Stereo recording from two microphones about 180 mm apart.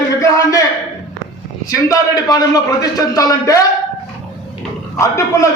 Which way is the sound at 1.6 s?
20° left (ahead or behind).